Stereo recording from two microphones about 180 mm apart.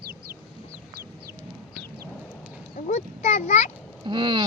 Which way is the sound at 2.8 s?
40° left (ahead or behind).